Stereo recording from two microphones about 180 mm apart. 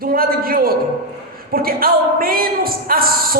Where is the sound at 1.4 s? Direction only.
55° right (ahead or behind).